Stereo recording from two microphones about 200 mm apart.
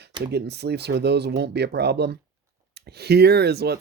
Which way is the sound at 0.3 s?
55° right (ahead or behind).